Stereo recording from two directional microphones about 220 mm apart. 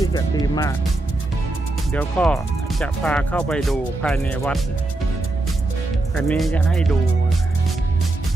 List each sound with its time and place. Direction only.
0.0 s speech: 20° left (ahead or behind)
1.9 s speech: 5° left (ahead or behind)
6.1 s speech: centre (ahead or behind)